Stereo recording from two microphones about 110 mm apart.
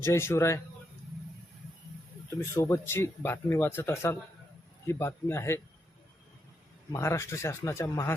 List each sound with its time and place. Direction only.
0.0 s speech: 25° left (ahead or behind)
2.3 s speech: 30° left (ahead or behind)
6.9 s speech: 25° left (ahead or behind)